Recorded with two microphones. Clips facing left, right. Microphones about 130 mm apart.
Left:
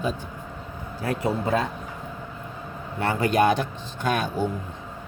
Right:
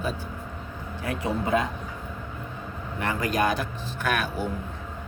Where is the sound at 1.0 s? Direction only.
35° left (ahead or behind).